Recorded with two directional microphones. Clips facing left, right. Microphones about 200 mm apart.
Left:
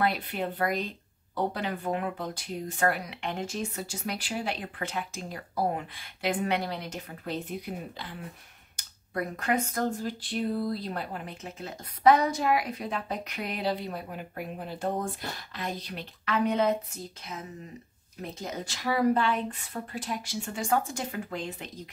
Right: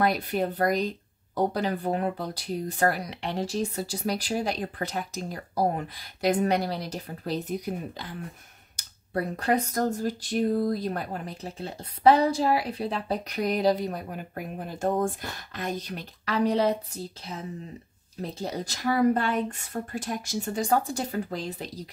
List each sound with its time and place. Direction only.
0.0 s speech: 40° right (ahead or behind)